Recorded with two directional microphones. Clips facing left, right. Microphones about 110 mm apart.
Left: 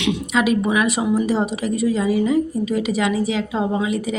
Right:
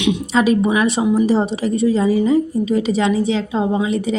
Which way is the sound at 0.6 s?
25° right (ahead or behind).